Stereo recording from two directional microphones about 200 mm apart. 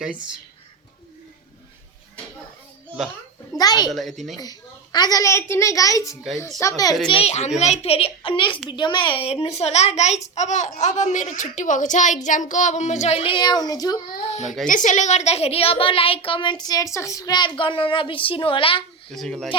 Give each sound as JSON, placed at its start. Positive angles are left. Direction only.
{"t": 3.6, "sound": "a woman's voice", "side_deg": 20}
{"t": 3.9, "sound": "a woman's voice", "side_deg": 0}
{"t": 4.4, "sound": "a child's voice", "side_deg": 20}
{"t": 7.1, "sound": "a child's voice", "side_deg": 30}
{"t": 14.7, "sound": "a woman's voice", "side_deg": 40}
{"t": 19.1, "sound": "a woman's voice", "side_deg": 0}